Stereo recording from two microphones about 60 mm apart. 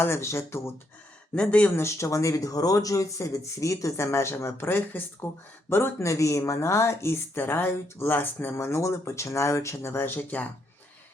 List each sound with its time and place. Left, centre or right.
0.0 s speech: left
1.4 s speech: left
1.7 s speech: left
6.1 s speech: left
8.5 s speech: left